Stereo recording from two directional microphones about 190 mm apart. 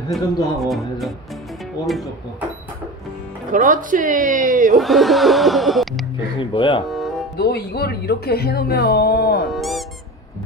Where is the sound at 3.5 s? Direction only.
45° right (ahead or behind).